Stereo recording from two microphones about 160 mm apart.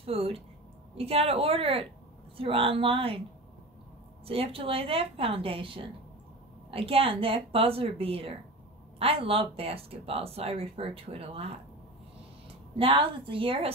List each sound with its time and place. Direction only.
0.0 s speech: 35° right (ahead or behind)
4.3 s speech: 35° right (ahead or behind)
12.7 s speech: 35° right (ahead or behind)